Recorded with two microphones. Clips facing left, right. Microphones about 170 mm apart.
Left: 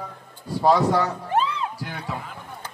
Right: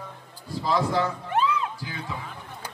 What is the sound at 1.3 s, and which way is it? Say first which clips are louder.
Music: left 1 dB; 30° left (ahead or behind).